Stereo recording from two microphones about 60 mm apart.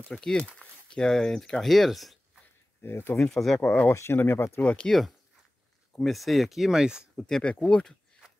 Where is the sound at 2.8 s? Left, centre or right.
Left.